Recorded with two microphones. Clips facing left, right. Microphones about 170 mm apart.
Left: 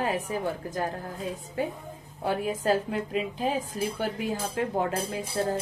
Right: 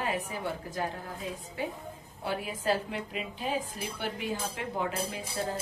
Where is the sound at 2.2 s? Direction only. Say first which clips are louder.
Left 5 dB; 40° left (ahead or behind).